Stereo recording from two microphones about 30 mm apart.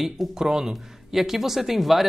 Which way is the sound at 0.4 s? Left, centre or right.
Centre.